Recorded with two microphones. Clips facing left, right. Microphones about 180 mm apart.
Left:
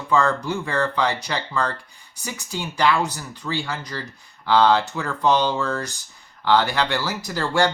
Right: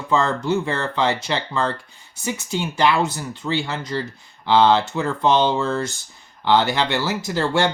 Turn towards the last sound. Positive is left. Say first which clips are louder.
# right 1 dB
turn(degrees=-20)  # may be behind; listen again after turning